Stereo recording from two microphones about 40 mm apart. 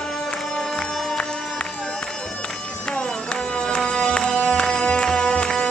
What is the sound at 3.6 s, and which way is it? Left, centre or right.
Music, left.